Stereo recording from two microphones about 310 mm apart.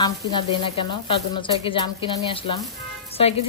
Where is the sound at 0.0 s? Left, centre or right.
Centre.